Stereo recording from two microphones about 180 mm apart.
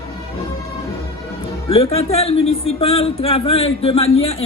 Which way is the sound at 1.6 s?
35° left (ahead or behind).